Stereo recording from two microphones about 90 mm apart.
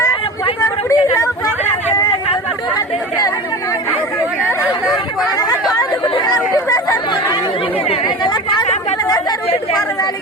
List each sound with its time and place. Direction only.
0.6 s a sound: 35° left (ahead or behind)
6.2 s chatter: 40° left (ahead or behind)
7.9 s chatter: 55° left (ahead or behind)